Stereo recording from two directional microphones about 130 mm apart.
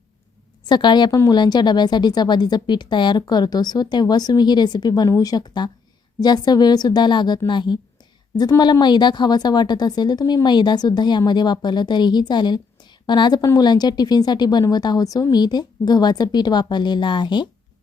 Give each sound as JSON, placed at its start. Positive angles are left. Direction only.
{"t": 0.7, "sound": "a woman's voice", "side_deg": 35}